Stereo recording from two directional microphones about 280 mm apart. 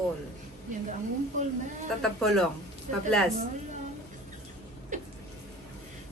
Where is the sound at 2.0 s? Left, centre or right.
Centre.